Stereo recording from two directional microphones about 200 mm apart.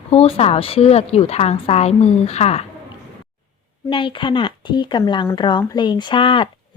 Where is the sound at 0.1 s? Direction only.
30° left (ahead or behind).